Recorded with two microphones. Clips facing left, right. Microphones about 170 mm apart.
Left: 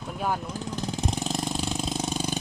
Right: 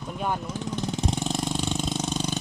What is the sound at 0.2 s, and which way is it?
Vehicle, 5° left (ahead or behind).